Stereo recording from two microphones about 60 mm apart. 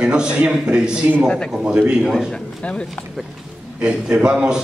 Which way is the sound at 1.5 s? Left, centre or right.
Centre.